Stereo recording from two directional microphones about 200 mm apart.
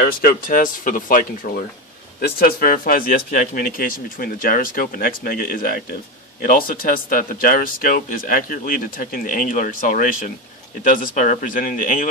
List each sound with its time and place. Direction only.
0.0 s speech: 50° left (ahead or behind)